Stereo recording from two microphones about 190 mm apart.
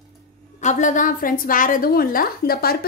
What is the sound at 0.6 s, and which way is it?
A woman's voice, 40° left (ahead or behind).